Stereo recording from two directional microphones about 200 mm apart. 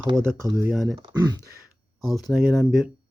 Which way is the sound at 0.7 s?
Centre (ahead or behind).